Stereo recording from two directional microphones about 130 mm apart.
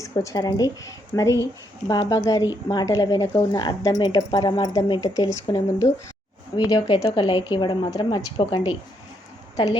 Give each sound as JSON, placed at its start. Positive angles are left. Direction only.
{"t": 0.0, "sound": "a woman's voice", "side_deg": 25}